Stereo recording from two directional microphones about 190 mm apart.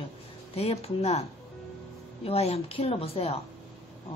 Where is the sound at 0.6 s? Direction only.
30° left (ahead or behind).